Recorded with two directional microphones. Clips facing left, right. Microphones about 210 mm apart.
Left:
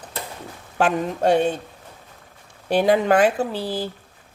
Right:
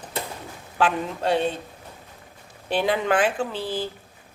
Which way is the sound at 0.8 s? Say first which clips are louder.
Left 4 dB; 45° left (ahead or behind).